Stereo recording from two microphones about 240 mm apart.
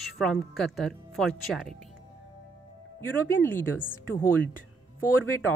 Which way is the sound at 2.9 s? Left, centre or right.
Centre.